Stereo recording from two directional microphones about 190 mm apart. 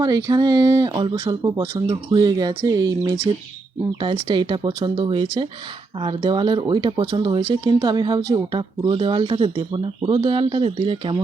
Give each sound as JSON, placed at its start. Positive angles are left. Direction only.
{"t": 0.0, "sound": "speech", "side_deg": -20}